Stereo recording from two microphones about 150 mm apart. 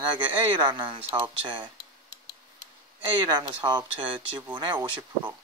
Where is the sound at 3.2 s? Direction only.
30° right (ahead or behind).